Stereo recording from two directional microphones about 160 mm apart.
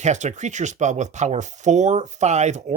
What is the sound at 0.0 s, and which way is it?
Speech, 45° right (ahead or behind).